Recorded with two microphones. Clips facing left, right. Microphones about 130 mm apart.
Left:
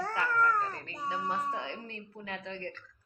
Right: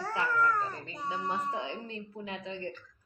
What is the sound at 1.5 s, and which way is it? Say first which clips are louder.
Speech: right 2 dB; 15° right (ahead or behind).